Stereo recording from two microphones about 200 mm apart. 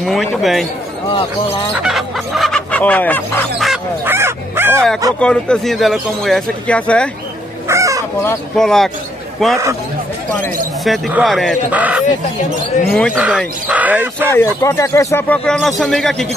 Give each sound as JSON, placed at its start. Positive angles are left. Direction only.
{"t": 0.0, "sound": "speech", "side_deg": 0}
{"t": 1.0, "sound": "speech", "side_deg": 25}
{"t": 1.8, "sound": "fowl", "side_deg": 0}
{"t": 5.2, "sound": "speech", "side_deg": 5}
{"t": 7.6, "sound": "chicken", "side_deg": -15}
{"t": 8.2, "sound": "speech", "side_deg": 5}
{"t": 10.8, "sound": "speech", "side_deg": 0}
{"t": 14.3, "sound": "speech", "side_deg": 10}